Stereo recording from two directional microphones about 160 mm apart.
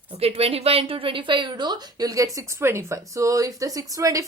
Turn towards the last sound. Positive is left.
turn(degrees=-20)  # may be behind; listen again after turning